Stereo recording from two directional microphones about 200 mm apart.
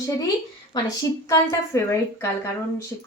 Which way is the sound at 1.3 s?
15° left (ahead or behind).